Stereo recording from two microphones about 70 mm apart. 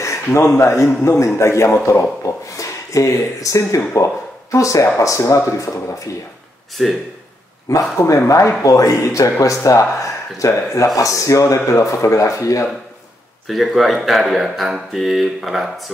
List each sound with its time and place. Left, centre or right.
0.0 s a man's voice: left
6.8 s speech: centre
7.7 s a man's voice: left
13.5 s speech: centre